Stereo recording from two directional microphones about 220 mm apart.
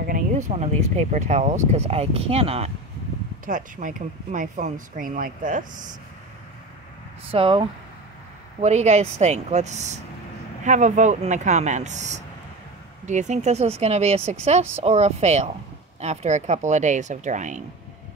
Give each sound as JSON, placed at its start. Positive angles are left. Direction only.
{"t": 0.0, "sound": "speech", "side_deg": -35}
{"t": 7.2, "sound": "speech", "side_deg": -25}